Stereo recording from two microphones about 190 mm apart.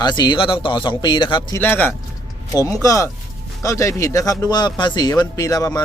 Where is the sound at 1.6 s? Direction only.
10° left (ahead or behind).